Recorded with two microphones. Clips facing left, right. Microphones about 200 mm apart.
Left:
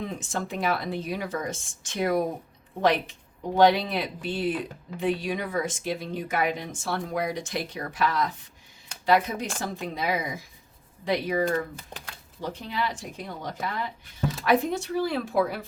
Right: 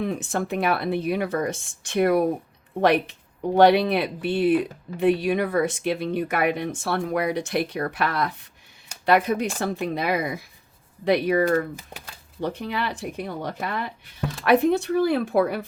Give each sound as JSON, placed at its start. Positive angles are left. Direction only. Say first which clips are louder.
{"t": 0.0, "sound": "speech", "louder": "right 6 dB", "side_deg": -60}
{"t": 11.9, "sound": "a sound", "louder": "even", "side_deg": -5}
{"t": 12.4, "sound": "speech", "louder": "right 4 dB", "side_deg": -65}